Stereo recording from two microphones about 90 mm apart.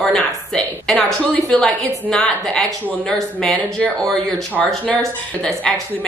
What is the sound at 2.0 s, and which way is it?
A woman's voice, 10° left (ahead or behind).